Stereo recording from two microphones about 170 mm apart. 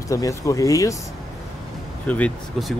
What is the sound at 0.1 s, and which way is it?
Speech, 20° left (ahead or behind).